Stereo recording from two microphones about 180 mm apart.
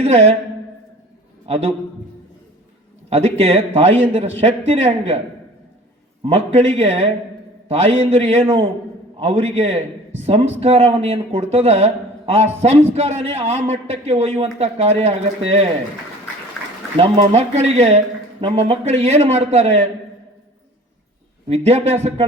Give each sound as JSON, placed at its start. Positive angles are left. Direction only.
{"t": 0.0, "sound": "a man's voice", "side_deg": -35}
{"t": 1.5, "sound": "a man's voice", "side_deg": -35}
{"t": 3.1, "sound": "a man's voice", "side_deg": -35}
{"t": 6.2, "sound": "a man's voice", "side_deg": -35}
{"t": 8.1, "sound": "a man's voice", "side_deg": -35}
{"t": 16.6, "sound": "a sound", "side_deg": 5}
{"t": 17.0, "sound": "a man's voice", "side_deg": -35}
{"t": 21.4, "sound": "a man's voice", "side_deg": -35}